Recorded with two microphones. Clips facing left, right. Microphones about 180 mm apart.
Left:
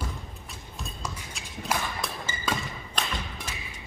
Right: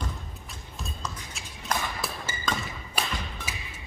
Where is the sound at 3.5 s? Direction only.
10° right (ahead or behind).